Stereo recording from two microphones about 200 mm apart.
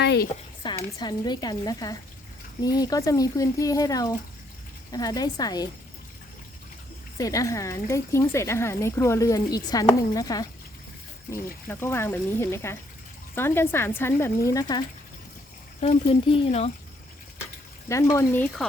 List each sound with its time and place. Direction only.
0.0 s a woman's voice: 55° left (ahead or behind)
0.6 s speech: 20° left (ahead or behind)
7.2 s speech: 15° left (ahead or behind)
15.8 s speech: 30° left (ahead or behind)
17.8 s speech: 15° left (ahead or behind)